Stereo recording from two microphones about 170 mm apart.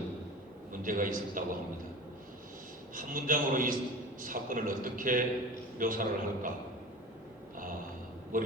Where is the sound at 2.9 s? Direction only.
55° right (ahead or behind).